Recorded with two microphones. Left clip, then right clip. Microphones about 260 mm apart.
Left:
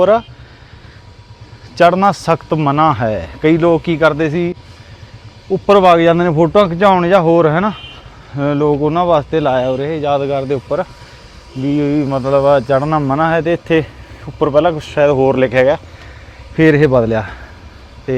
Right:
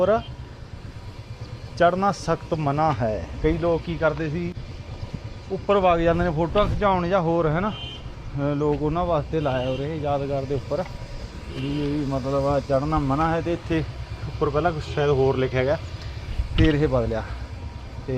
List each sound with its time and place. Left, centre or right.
1.7 s speech: left
5.6 s speech: left
12.1 s speech: left